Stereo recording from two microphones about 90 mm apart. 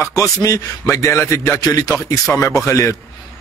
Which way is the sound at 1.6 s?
45° left (ahead or behind).